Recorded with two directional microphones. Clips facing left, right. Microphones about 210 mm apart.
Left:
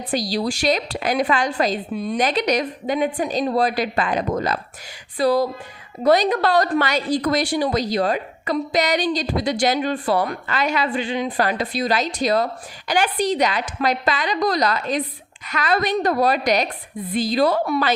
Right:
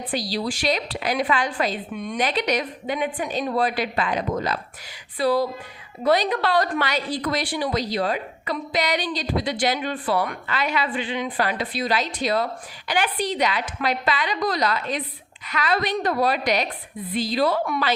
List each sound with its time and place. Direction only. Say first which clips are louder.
0.1 s a woman's voice: left 4 dB; 45° left (ahead or behind)